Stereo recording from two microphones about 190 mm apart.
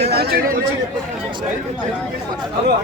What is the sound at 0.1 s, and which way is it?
Chatter, 55° right (ahead or behind).